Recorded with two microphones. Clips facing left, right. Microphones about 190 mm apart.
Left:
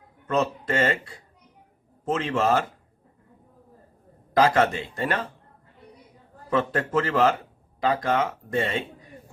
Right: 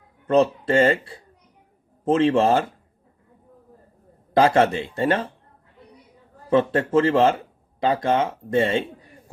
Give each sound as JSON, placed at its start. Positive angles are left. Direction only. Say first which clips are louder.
{"t": 0.3, "sound": "speech", "louder": "right 6 dB", "side_deg": -30}
{"t": 4.4, "sound": "speech", "louder": "right 3 dB", "side_deg": -30}
{"t": 6.5, "sound": "speech", "louder": "right 5 dB", "side_deg": -25}